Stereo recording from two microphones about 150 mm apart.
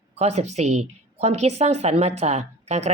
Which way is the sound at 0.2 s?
45° right (ahead or behind).